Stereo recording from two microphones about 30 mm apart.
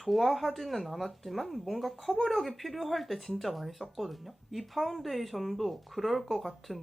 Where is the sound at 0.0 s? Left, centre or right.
Centre.